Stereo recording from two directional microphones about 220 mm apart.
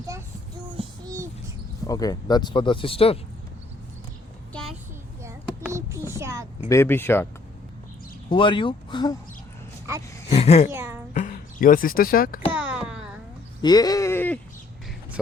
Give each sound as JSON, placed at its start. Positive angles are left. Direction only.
{"t": 0.0, "sound": "child singing", "side_deg": -15}
{"t": 1.9, "sound": "speech", "side_deg": 15}
{"t": 5.2, "sound": "a sound", "side_deg": -15}
{"t": 6.7, "sound": "speech", "side_deg": 10}
{"t": 8.3, "sound": "speech", "side_deg": 20}
{"t": 10.2, "sound": "speech", "side_deg": 30}
{"t": 10.7, "sound": "a woman's voice", "side_deg": -10}
{"t": 11.1, "sound": "speech", "side_deg": 40}
{"t": 12.5, "sound": "a sound", "side_deg": -5}
{"t": 13.6, "sound": "a sound", "side_deg": 20}